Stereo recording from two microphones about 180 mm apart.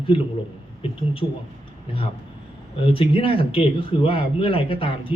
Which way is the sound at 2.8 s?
30° left (ahead or behind).